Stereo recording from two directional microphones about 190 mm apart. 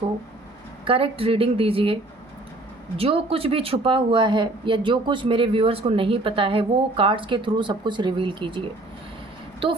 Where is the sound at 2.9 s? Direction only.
30° right (ahead or behind).